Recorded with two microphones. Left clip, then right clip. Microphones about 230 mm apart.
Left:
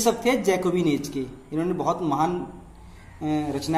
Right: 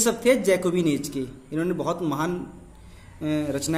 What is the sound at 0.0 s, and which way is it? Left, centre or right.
A man's voice, right.